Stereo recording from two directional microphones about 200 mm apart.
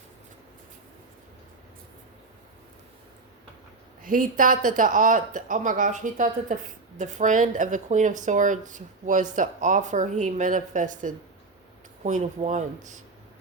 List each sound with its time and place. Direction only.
4.0 s speech: 45° right (ahead or behind)